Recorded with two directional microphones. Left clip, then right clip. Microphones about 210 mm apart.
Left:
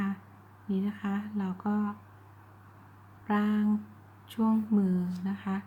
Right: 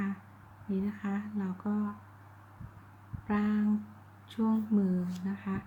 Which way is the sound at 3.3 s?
15° left (ahead or behind).